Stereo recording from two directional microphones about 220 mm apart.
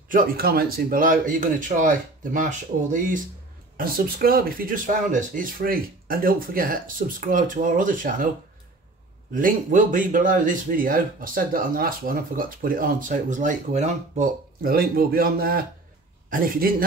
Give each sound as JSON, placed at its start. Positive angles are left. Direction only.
{"t": 0.1, "sound": "a man's voice", "side_deg": -40}
{"t": 9.3, "sound": "a man's voice", "side_deg": -35}